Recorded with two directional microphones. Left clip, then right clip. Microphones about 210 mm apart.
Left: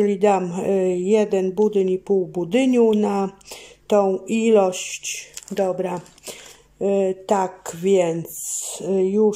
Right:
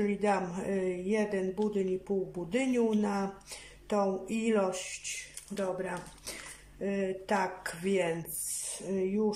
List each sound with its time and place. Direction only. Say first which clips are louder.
0.0 s speech: left 12 dB; 40° left (ahead or behind)